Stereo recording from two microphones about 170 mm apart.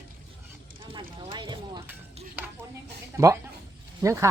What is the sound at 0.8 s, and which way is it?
Mechanisms, 30° right (ahead or behind).